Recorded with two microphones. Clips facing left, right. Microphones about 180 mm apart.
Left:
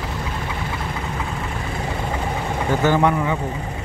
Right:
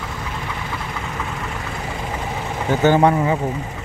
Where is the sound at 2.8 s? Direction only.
30° right (ahead or behind).